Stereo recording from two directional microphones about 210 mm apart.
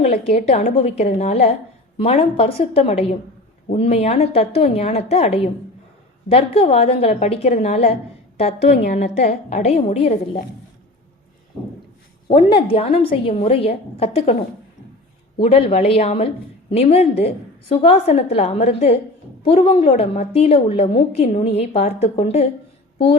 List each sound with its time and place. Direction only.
0.0 s a woman's voice: 30° left (ahead or behind)
12.5 s a woman's voice: 30° left (ahead or behind)
15.4 s a woman's voice: 30° left (ahead or behind)